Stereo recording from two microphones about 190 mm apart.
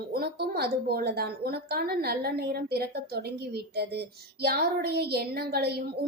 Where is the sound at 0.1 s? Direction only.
55° right (ahead or behind).